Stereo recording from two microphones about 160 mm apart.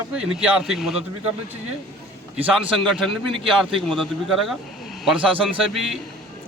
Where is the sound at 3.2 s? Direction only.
35° right (ahead or behind).